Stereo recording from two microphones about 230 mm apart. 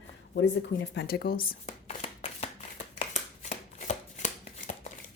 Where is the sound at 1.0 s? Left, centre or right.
Left.